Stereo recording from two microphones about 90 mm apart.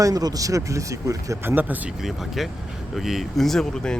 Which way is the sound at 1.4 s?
25° right (ahead or behind).